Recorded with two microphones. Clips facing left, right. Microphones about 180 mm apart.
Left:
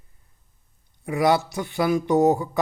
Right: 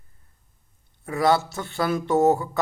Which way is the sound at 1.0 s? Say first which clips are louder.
Left 1 dB; 20° left (ahead or behind).